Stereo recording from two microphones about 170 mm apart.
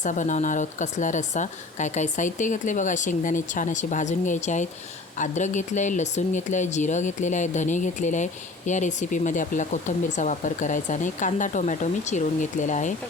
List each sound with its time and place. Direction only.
0.0 s speech: 45° left (ahead or behind)